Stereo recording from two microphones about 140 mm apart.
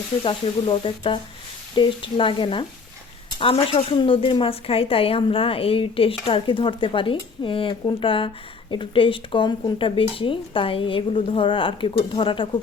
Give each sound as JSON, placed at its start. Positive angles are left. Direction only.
{"t": 0.2, "sound": "speech", "side_deg": 35}